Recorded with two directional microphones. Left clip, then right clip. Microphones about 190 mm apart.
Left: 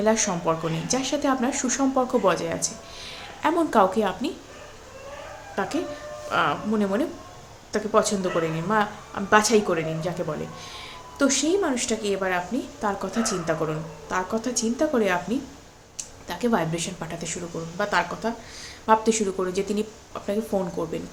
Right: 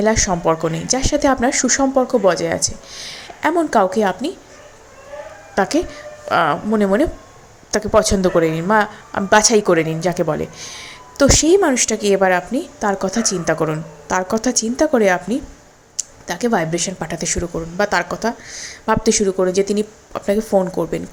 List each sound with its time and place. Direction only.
0.0 s speech: 30° right (ahead or behind)
5.5 s speech: 35° right (ahead or behind)